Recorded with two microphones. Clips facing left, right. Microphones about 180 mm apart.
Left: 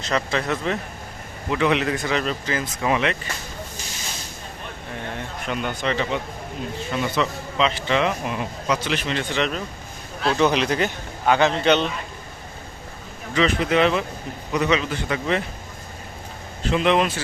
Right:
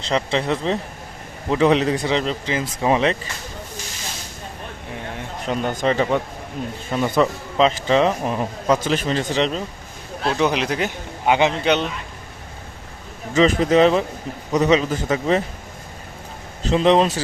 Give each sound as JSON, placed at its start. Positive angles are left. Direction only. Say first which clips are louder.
{"t": 0.1, "sound": "speech", "louder": "right 3 dB", "side_deg": -25}
{"t": 5.5, "sound": "speech", "louder": "right 5 dB", "side_deg": -40}
{"t": 10.3, "sound": "speech", "louder": "left 1 dB", "side_deg": -10}
{"t": 13.3, "sound": "speech", "louder": "right 5 dB", "side_deg": -35}
{"t": 16.7, "sound": "speech", "louder": "right 4 dB", "side_deg": -35}